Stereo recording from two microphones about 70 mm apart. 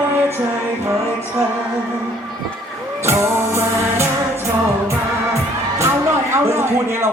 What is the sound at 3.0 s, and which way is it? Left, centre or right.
Music, right.